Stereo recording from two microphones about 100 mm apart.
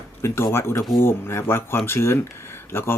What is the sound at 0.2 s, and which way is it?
Speech, 30° left (ahead or behind).